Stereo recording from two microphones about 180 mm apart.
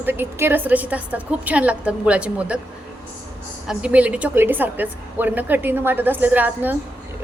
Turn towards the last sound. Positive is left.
turn(degrees=-10)  # may be behind; listen again after turning